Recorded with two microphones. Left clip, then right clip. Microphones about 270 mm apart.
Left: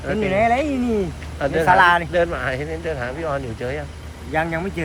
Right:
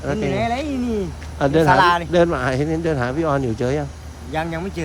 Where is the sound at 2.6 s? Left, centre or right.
Right.